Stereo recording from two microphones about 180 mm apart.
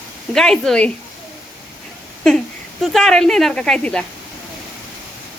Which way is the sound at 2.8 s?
Centre (ahead or behind).